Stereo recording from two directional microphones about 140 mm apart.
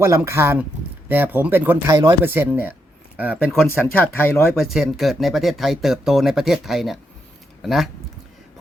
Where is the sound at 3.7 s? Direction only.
15° left (ahead or behind).